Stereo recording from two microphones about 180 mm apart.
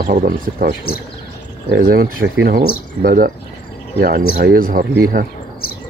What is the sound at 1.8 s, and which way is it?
Speech, 55° right (ahead or behind).